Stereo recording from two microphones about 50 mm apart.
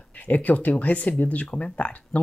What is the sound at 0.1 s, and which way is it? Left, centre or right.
Speech, left.